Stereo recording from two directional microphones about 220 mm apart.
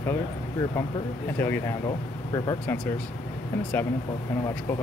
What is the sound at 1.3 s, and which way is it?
Speech, 10° left (ahead or behind).